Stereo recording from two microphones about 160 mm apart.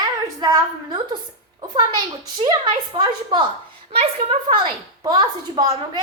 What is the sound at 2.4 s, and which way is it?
A child's voice, 30° right (ahead or behind).